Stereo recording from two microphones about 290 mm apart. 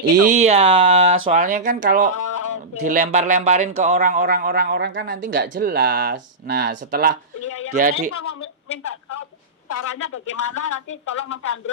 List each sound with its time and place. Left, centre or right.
0.2 s speech: right
2.1 s a sound: left
2.8 s speech: right
8.1 s a woman's voice: left
9.6 s a woman's voice: left
10.3 s speech: left